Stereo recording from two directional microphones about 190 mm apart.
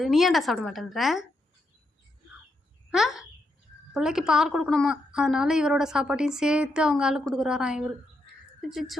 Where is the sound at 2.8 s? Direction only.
Centre (ahead or behind).